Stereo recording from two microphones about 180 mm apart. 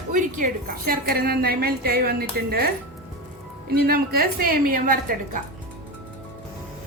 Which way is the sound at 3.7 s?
60° right (ahead or behind).